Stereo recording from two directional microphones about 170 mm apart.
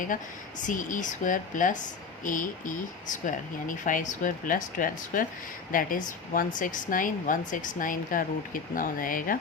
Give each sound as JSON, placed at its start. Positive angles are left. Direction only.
{"t": 0.6, "sound": "a woman's voice", "side_deg": 50}